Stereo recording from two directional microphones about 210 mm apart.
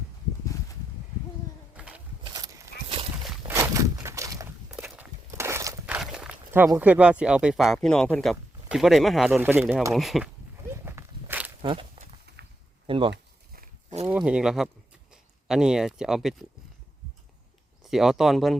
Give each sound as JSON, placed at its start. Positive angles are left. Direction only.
{"t": 1.7, "sound": "a sound", "side_deg": -5}
{"t": 2.2, "sound": "walk", "side_deg": -20}
{"t": 4.7, "sound": "walk", "side_deg": -5}
{"t": 5.3, "sound": "speech", "side_deg": -15}
{"t": 10.8, "sound": "walk", "side_deg": -10}
{"t": 11.6, "sound": "speech", "side_deg": -25}
{"t": 11.9, "sound": "a sound", "side_deg": -50}
{"t": 12.9, "sound": "speech", "side_deg": -25}
{"t": 14.1, "sound": "speech", "side_deg": -5}
{"t": 17.8, "sound": "speech", "side_deg": 0}